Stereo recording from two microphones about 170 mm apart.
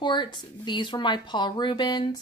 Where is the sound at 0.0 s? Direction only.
25° left (ahead or behind).